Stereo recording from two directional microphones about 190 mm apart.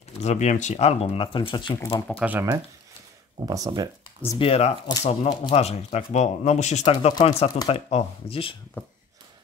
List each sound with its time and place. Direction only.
0.2 s speech: 35° left (ahead or behind)
2.0 s speech: 5° right (ahead or behind)
4.4 s speech: 30° left (ahead or behind)
8.8 s speech: 10° left (ahead or behind)